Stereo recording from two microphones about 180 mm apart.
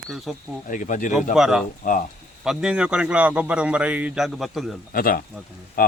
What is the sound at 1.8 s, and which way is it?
Speech, 50° left (ahead or behind).